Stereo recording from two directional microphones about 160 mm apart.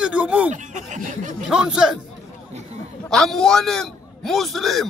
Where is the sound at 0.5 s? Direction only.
50° right (ahead or behind).